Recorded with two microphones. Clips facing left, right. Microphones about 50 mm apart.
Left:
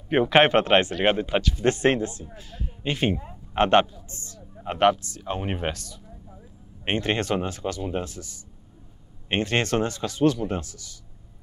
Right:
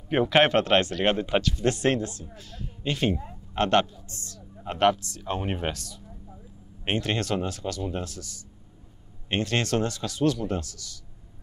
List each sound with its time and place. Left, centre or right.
0.1 s speech: centre
1.6 s speech: left